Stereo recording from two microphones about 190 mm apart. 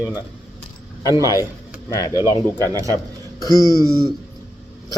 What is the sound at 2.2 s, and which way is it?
A man's voice, 15° right (ahead or behind).